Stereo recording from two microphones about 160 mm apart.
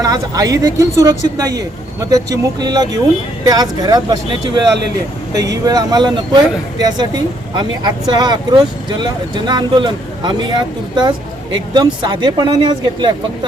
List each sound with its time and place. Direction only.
0.0 s speech: 20° right (ahead or behind)
5.6 s speech: 25° right (ahead or behind)